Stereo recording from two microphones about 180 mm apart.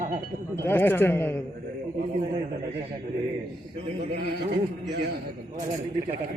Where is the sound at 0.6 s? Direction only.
10° left (ahead or behind).